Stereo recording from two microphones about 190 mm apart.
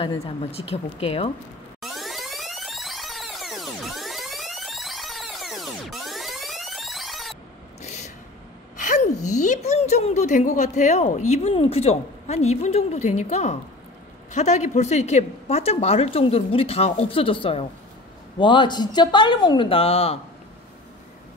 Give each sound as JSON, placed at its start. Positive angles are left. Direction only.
{"t": 0.0, "sound": "speech", "side_deg": 30}
{"t": 1.8, "sound": "music", "side_deg": 0}
{"t": 7.8, "sound": "a sound", "side_deg": 35}
{"t": 9.2, "sound": "a woman's voice", "side_deg": 40}